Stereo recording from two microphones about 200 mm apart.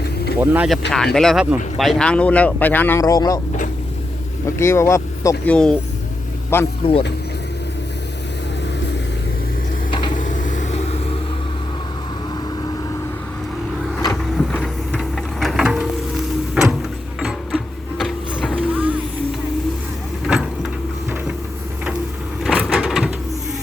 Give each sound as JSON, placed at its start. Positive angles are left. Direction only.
{"t": 0.3, "sound": "speech", "side_deg": -10}
{"t": 4.4, "sound": "speech", "side_deg": 15}
{"t": 10.2, "sound": "vehicle", "side_deg": 40}
{"t": 14.0, "sound": "vehicle", "side_deg": 15}
{"t": 14.6, "sound": "a sound", "side_deg": 5}
{"t": 17.2, "sound": "printer", "side_deg": 0}
{"t": 18.7, "sound": "music", "side_deg": -5}
{"t": 20.2, "sound": "vehicle", "side_deg": -5}
{"t": 22.4, "sound": "a sound", "side_deg": -5}